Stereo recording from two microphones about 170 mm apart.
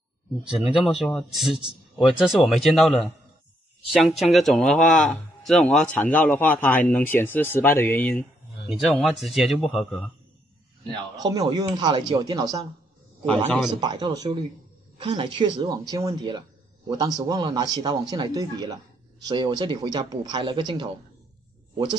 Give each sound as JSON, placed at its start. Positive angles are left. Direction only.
{"t": 0.4, "sound": "speech", "side_deg": -5}
{"t": 8.6, "sound": "speech", "side_deg": 0}
{"t": 11.2, "sound": "speech", "side_deg": -25}
{"t": 13.2, "sound": "speech", "side_deg": 5}
{"t": 13.7, "sound": "speech", "side_deg": -25}